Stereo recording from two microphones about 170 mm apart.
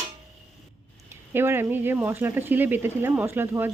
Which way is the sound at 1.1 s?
15° right (ahead or behind).